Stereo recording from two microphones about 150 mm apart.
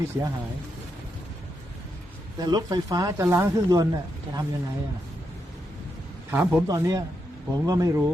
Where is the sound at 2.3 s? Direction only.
25° right (ahead or behind).